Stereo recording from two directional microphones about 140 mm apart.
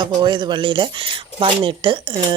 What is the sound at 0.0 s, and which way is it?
Speech, 35° right (ahead or behind).